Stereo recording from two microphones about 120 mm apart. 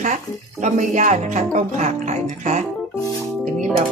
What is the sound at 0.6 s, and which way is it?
Speech, 75° right (ahead or behind).